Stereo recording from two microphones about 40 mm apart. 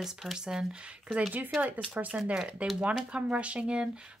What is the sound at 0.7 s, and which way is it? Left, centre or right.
Speech, right.